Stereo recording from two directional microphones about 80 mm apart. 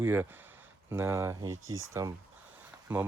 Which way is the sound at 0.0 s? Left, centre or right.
Right.